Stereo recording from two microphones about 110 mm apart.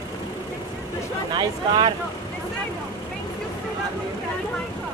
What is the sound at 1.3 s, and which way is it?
Speech, 40° right (ahead or behind).